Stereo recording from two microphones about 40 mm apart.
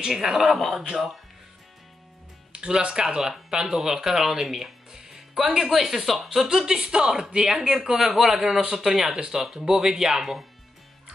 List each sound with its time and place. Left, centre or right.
0.0 s speech: centre
0.6 s a man's voice: centre
0.8 s speech: centre
2.5 s speech: right